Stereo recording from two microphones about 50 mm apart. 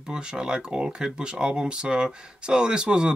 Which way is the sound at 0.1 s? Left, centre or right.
Centre.